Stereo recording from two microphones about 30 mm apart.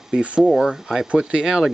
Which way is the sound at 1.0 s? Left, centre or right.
Right.